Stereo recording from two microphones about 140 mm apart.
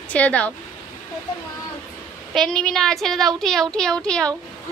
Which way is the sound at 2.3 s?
5° left (ahead or behind).